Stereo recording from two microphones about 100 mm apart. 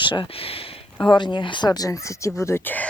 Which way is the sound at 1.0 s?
50° left (ahead or behind).